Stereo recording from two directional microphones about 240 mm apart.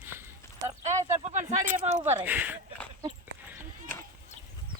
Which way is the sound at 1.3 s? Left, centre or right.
Right.